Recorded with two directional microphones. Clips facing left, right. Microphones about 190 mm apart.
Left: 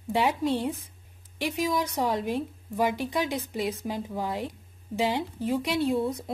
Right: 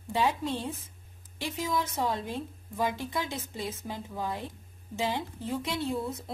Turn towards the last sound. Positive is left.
turn(degrees=15)  # may be behind; listen again after turning